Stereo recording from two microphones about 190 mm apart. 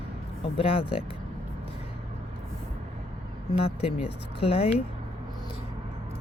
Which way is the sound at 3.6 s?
30° left (ahead or behind).